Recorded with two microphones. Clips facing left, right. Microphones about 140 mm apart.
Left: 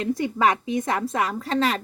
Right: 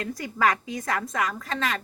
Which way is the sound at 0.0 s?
25° left (ahead or behind).